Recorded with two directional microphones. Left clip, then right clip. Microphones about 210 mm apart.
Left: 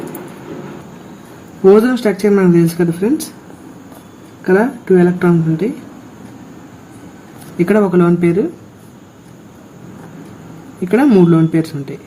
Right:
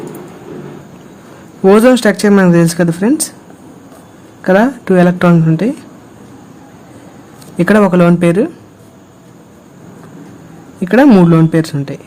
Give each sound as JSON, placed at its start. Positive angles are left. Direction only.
{"t": 1.6, "sound": "speech", "side_deg": -45}
{"t": 4.4, "sound": "speech", "side_deg": -45}
{"t": 7.6, "sound": "a woman's voice", "side_deg": -40}
{"t": 10.8, "sound": "a woman's voice", "side_deg": -35}